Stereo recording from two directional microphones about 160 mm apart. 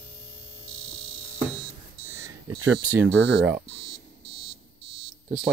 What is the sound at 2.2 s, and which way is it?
Speech, 10° right (ahead or behind).